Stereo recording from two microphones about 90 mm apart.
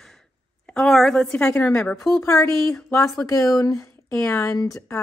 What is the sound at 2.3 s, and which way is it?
Speech, 35° left (ahead or behind).